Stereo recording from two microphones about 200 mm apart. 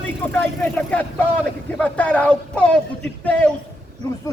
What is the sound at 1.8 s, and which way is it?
Speech, 5° left (ahead or behind).